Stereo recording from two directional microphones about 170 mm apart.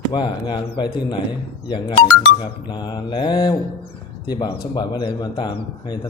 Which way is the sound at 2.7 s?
25° left (ahead or behind).